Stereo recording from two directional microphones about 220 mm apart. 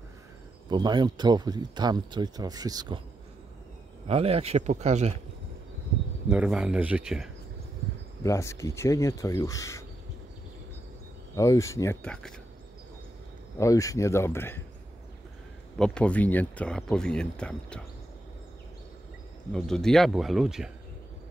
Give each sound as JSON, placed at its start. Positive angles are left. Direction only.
{"t": 0.7, "sound": "speech", "side_deg": -20}
{"t": 4.1, "sound": "speech", "side_deg": -25}
{"t": 6.3, "sound": "speech", "side_deg": -5}
{"t": 8.2, "sound": "speech", "side_deg": 15}
{"t": 11.3, "sound": "speech", "side_deg": 15}
{"t": 13.6, "sound": "speech", "side_deg": 15}
{"t": 15.8, "sound": "speech", "side_deg": 5}
{"t": 19.5, "sound": "speech", "side_deg": 5}